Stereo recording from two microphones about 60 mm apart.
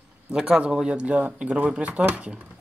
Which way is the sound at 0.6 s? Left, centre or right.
Centre.